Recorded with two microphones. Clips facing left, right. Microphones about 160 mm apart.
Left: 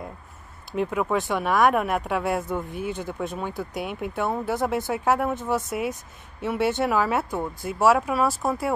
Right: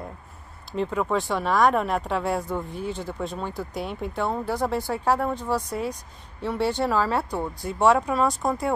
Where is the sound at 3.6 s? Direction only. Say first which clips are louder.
Left 1 dB; 5° left (ahead or behind).